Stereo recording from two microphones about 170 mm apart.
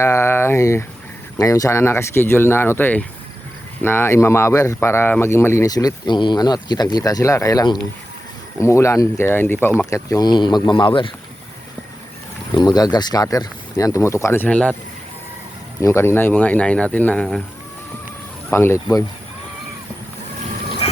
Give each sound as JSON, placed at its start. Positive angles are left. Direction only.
{"t": 0.0, "sound": "speech", "side_deg": 15}
{"t": 12.5, "sound": "speech", "side_deg": 25}
{"t": 15.8, "sound": "speech", "side_deg": 15}
{"t": 18.5, "sound": "speech", "side_deg": 15}
{"t": 20.8, "sound": "water", "side_deg": 35}